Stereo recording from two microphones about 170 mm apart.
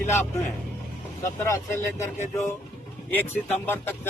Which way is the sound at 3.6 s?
15° left (ahead or behind).